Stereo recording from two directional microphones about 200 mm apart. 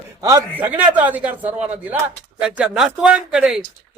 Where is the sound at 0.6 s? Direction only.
10° right (ahead or behind).